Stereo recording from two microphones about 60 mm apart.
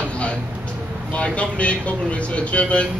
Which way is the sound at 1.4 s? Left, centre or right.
Left.